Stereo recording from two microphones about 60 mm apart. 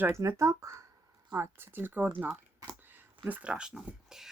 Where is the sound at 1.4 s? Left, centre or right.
Right.